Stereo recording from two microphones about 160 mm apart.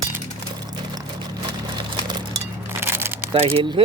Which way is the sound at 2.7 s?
15° right (ahead or behind).